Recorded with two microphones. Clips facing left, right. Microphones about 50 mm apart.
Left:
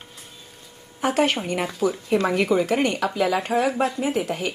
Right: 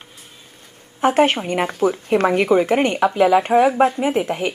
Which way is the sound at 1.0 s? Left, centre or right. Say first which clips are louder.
Right 5 dB; right.